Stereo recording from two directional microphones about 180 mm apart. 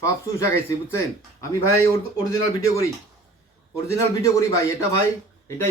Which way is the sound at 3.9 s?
15° left (ahead or behind).